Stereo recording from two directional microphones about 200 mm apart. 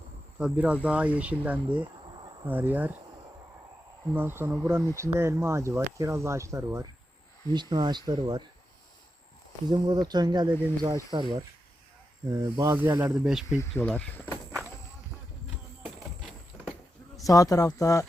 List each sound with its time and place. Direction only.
0.3 s speech: 5° right (ahead or behind)
4.1 s speech: 10° right (ahead or behind)
9.6 s speech: 20° right (ahead or behind)
13.6 s speech: 10° left (ahead or behind)
17.2 s speech: 15° left (ahead or behind)